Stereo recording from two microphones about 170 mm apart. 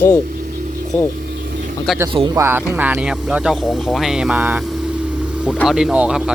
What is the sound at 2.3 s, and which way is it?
Speech, 15° right (ahead or behind).